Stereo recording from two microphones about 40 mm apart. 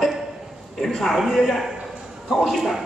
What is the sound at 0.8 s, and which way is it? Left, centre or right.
A woman's voice, centre.